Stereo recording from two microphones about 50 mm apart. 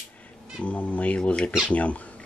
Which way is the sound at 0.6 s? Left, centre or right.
Left.